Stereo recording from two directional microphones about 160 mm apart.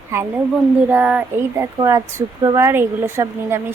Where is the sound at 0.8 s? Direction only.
10° right (ahead or behind).